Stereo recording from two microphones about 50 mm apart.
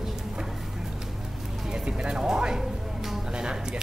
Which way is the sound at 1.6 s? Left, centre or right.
Centre.